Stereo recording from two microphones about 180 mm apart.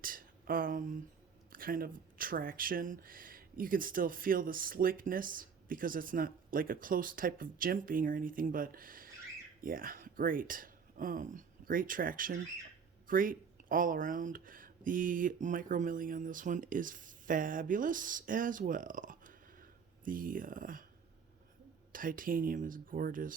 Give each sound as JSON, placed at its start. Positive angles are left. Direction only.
{"t": 0.0, "sound": "speech", "side_deg": -50}
{"t": 21.9, "sound": "speech", "side_deg": -50}